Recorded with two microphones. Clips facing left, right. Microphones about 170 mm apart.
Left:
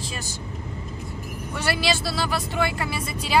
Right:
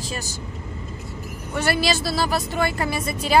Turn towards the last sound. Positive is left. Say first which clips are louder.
# right 5 dB
turn(degrees=-45)  # may be behind; listen again after turning